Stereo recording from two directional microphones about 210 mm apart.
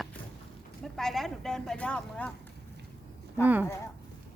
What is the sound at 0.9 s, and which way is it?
Speech, centre (ahead or behind).